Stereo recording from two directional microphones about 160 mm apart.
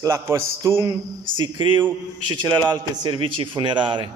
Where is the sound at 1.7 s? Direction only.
15° right (ahead or behind).